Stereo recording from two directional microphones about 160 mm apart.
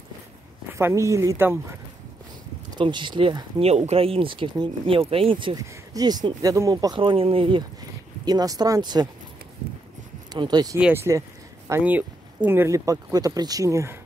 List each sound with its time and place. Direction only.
0.7 s speech: 15° right (ahead or behind)
2.8 s speech: 30° right (ahead or behind)
10.3 s speech: 25° right (ahead or behind)
10.8 s speech: 15° right (ahead or behind)